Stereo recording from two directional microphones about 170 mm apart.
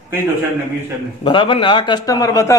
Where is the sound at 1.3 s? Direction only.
30° left (ahead or behind).